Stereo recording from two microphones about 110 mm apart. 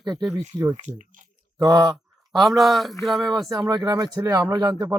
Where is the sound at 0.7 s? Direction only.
90° right.